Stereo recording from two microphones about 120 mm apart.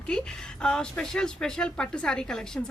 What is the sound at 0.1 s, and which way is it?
A woman's voice, 5° left (ahead or behind).